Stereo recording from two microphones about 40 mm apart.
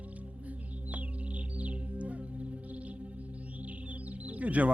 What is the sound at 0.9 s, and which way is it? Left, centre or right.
Music, right.